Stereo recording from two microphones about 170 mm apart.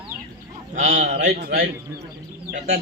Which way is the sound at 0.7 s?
50° right (ahead or behind).